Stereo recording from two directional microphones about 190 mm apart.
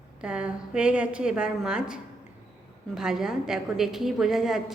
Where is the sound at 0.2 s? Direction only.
5° right (ahead or behind).